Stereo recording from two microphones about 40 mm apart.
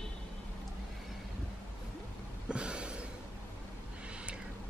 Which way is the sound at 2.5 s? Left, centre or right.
Right.